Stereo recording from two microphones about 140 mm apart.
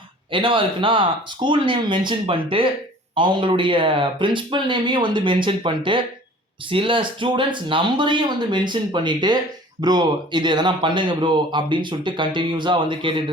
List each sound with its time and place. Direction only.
0.3 s speech: 35° right (ahead or behind)